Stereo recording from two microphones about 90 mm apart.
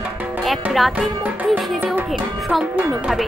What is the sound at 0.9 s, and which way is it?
Music, 20° right (ahead or behind).